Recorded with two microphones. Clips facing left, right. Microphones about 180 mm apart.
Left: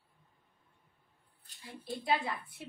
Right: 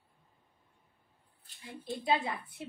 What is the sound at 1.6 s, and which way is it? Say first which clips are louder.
Speech: right 2 dB; 20° right (ahead or behind).